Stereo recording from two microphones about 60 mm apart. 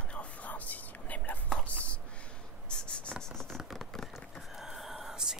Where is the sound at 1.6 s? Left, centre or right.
Left.